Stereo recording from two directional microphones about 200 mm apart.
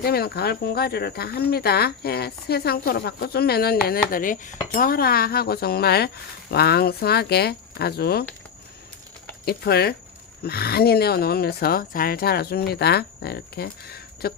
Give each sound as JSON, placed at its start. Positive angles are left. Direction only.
{"t": 0.0, "sound": "a woman's voice", "side_deg": 50}
{"t": 9.5, "sound": "a woman's voice", "side_deg": 50}